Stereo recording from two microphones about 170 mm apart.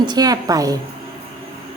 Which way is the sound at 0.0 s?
25° right (ahead or behind).